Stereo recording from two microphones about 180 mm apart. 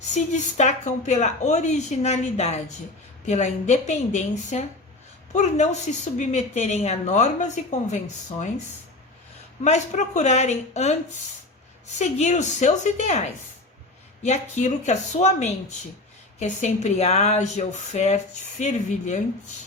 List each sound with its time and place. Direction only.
0.5 s a woman's voice: 40° left (ahead or behind)
9.6 s a woman's voice: 40° left (ahead or behind)
11.9 s a woman's voice: 40° left (ahead or behind)